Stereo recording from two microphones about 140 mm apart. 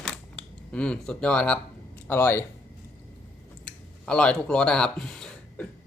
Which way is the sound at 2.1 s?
15° left (ahead or behind).